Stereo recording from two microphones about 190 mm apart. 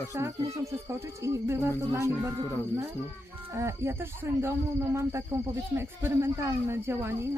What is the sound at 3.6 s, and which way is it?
Speech, 15° right (ahead or behind).